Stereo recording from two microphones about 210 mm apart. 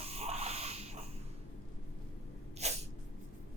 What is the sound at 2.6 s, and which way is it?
Sneeze, 30° right (ahead or behind).